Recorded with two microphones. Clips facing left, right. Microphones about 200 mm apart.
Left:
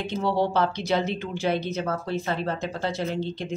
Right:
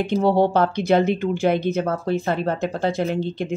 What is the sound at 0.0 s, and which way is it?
Speech, 50° right (ahead or behind).